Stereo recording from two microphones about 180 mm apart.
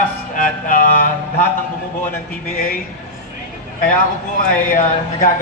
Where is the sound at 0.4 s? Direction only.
50° left (ahead or behind).